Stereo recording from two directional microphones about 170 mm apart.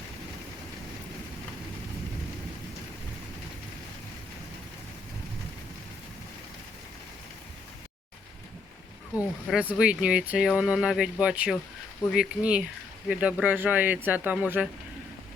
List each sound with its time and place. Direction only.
9.5 s speech: 5° right (ahead or behind)